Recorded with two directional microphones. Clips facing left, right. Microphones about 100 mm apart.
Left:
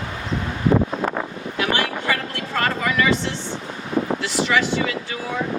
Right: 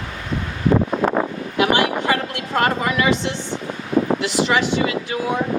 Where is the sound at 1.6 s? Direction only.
20° right (ahead or behind).